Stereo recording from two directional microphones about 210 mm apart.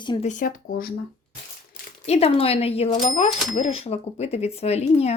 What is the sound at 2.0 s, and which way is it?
A woman's voice, 30° left (ahead or behind).